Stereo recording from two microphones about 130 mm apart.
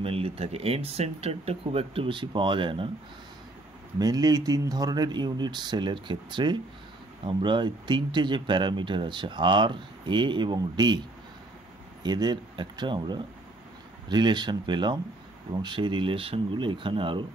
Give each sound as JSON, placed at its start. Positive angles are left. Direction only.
{"t": 0.0, "sound": "speech", "side_deg": -45}
{"t": 4.0, "sound": "speech", "side_deg": -30}
{"t": 12.0, "sound": "speech", "side_deg": -35}